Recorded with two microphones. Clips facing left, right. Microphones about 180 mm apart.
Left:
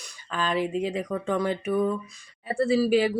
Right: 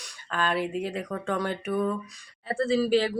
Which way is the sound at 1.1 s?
10° left (ahead or behind).